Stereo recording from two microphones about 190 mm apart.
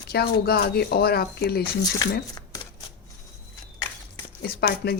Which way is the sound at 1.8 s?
20° left (ahead or behind).